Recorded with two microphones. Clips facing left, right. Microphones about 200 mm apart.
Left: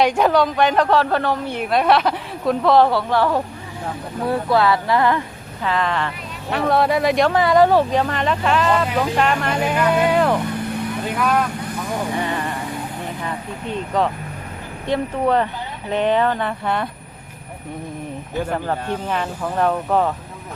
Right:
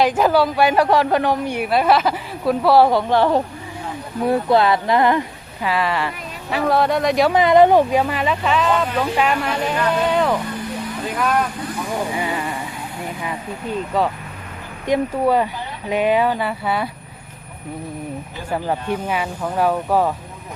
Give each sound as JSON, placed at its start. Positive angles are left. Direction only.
{"t": 0.0, "sound": "a woman's voice", "side_deg": 0}
{"t": 5.6, "sound": "a woman's voice", "side_deg": -10}
{"t": 7.3, "sound": "a woman's voice", "side_deg": -15}
{"t": 10.5, "sound": "vehicle", "side_deg": 60}
{"t": 12.1, "sound": "a woman's voice", "side_deg": -10}
{"t": 18.5, "sound": "a woman's voice", "side_deg": -10}